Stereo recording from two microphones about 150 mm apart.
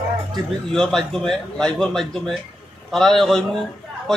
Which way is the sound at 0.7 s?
5° left (ahead or behind).